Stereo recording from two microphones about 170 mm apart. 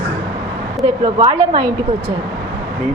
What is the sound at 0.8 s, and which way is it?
Speech, 30° right (ahead or behind).